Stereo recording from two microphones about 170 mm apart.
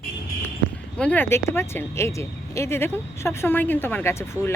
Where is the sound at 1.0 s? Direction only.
10° left (ahead or behind).